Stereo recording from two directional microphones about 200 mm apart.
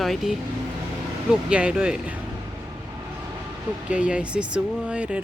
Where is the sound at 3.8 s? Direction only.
5° right (ahead or behind).